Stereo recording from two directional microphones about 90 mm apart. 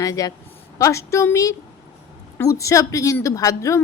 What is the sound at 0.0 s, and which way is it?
A woman's voice, 40° left (ahead or behind).